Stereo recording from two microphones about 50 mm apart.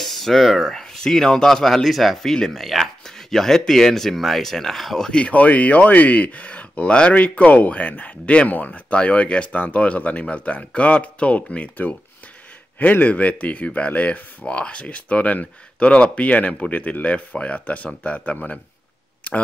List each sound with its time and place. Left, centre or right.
0.0 s speech: centre
5.1 s speech: left